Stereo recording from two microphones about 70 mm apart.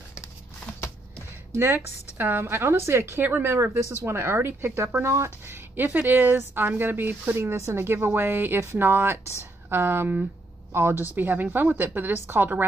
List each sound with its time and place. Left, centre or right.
1.5 s speech: right
7.3 s speech: right
11.1 s speech: right